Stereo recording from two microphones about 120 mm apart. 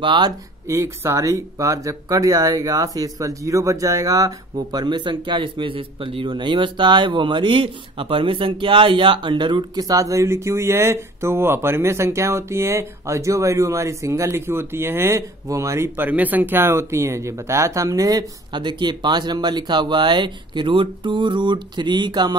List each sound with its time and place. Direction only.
0.0 s speech: 40° right (ahead or behind)
0.7 s speech: 25° right (ahead or behind)